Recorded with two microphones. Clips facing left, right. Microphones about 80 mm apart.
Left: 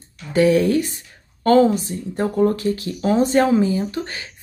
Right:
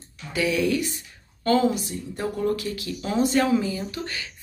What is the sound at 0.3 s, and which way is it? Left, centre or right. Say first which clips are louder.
Speech: left 8 dB; left.